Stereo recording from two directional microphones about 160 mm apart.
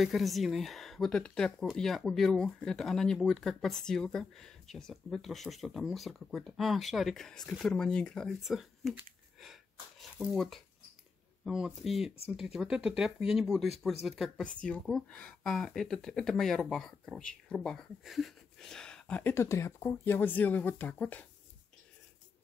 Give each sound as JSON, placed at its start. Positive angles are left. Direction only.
{"t": 0.0, "sound": "speech", "side_deg": 0}
{"t": 9.4, "sound": "a sound", "side_deg": 0}
{"t": 11.4, "sound": "speech", "side_deg": 0}